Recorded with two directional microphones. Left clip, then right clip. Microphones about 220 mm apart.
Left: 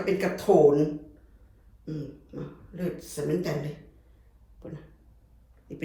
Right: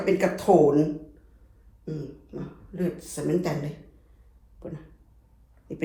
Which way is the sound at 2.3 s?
15° left (ahead or behind).